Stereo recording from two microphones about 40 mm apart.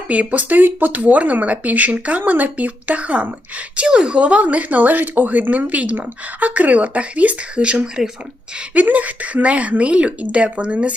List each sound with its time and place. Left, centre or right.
0.1 s speech: right
1.0 s speech: right
3.8 s speech: right
8.0 s speech: centre
8.7 s speech: right